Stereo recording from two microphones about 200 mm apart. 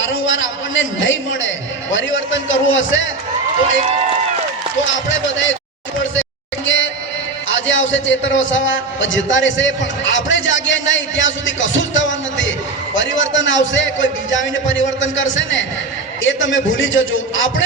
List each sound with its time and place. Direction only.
0.0 s a man's voice: 70° left (ahead or behind)
6.7 s music: 70° left (ahead or behind)
7.4 s a man's voice: 70° left (ahead or behind)